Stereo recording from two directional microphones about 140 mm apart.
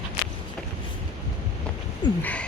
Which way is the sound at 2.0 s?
30° left (ahead or behind).